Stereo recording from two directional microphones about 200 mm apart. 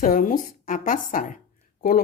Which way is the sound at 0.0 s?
45° left (ahead or behind).